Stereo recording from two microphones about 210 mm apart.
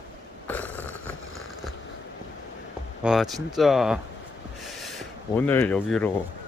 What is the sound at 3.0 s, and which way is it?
Speech, centre (ahead or behind).